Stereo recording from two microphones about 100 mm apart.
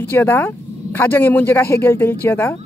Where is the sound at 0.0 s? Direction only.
20° left (ahead or behind).